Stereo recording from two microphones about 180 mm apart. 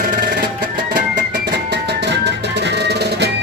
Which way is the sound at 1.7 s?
70° right (ahead or behind).